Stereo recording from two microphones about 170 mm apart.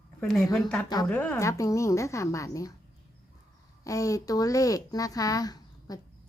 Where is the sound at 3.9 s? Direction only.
20° left (ahead or behind).